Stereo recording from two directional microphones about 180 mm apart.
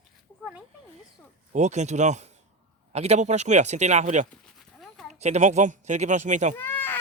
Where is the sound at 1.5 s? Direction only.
40° right (ahead or behind).